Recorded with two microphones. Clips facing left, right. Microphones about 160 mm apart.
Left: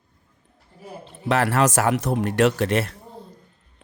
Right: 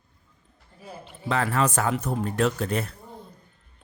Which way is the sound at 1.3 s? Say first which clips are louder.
Left 4 dB; 75° left (ahead or behind).